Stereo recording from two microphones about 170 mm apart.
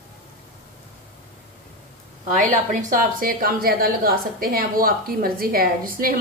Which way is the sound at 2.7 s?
55° right (ahead or behind).